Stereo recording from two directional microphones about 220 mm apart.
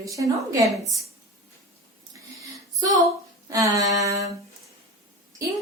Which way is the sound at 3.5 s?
15° right (ahead or behind).